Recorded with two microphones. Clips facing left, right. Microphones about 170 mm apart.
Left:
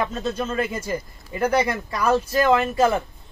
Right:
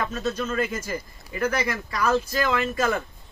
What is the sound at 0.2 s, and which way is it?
Speech, 30° left (ahead or behind).